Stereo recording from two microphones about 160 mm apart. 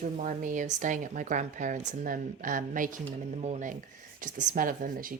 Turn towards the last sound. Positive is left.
turn(degrees=-60)  # may be behind; listen again after turning